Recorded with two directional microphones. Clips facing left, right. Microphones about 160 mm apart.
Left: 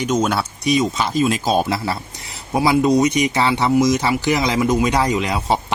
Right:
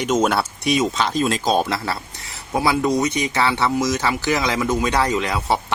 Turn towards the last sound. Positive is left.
turn(degrees=15)  # may be behind; listen again after turning